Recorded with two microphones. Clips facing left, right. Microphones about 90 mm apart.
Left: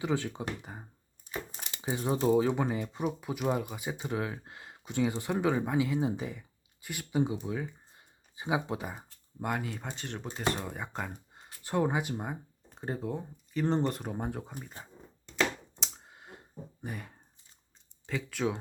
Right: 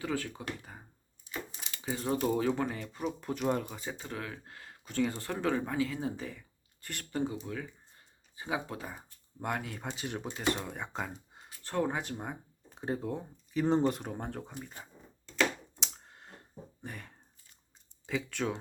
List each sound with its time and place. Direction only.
0.0 s speech: 20° left (ahead or behind)
9.4 s speech: centre (ahead or behind)
11.6 s speech: 10° left (ahead or behind)
15.8 s clicking: 5° left (ahead or behind)
16.8 s speech: 10° left (ahead or behind)